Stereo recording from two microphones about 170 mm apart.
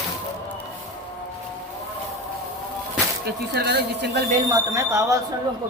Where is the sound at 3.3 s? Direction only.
70° right (ahead or behind).